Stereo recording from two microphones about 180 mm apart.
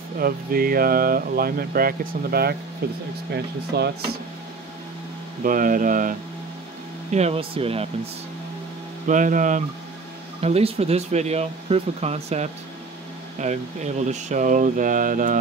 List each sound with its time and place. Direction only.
0.2 s speech: 55° right (ahead or behind)
5.4 s speech: 50° right (ahead or behind)
7.1 s speech: 35° right (ahead or behind)
9.0 s speech: 45° right (ahead or behind)
10.4 s speech: 35° right (ahead or behind)